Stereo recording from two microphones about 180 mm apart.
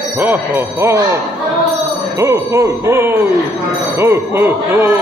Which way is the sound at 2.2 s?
15° right (ahead or behind).